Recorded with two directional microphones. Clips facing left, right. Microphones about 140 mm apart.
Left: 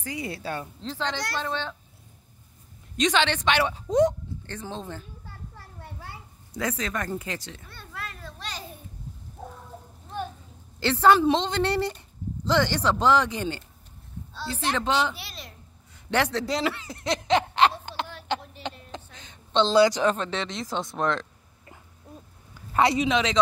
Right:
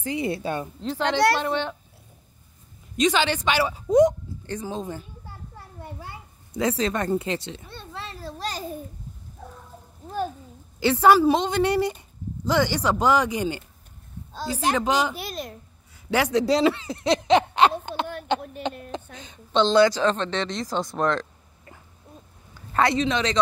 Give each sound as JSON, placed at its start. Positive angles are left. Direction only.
{"t": 0.0, "sound": "a woman's voice", "side_deg": -25}
{"t": 1.0, "sound": "speech", "side_deg": -65}
{"t": 1.4, "sound": "a woman's voice", "side_deg": -15}
{"t": 3.0, "sound": "a woman's voice", "side_deg": -5}
{"t": 6.5, "sound": "a child's voice", "side_deg": -25}
{"t": 10.8, "sound": "a woman's voice", "side_deg": -10}
{"t": 14.8, "sound": "a woman's voice", "side_deg": -10}
{"t": 15.1, "sound": "a woman's voice", "side_deg": -50}
{"t": 16.1, "sound": "a woman's voice", "side_deg": -10}
{"t": 16.4, "sound": "speech", "side_deg": -25}
{"t": 19.5, "sound": "a woman's voice", "side_deg": 0}
{"t": 19.8, "sound": "speech", "side_deg": 15}
{"t": 22.7, "sound": "a woman's voice", "side_deg": 15}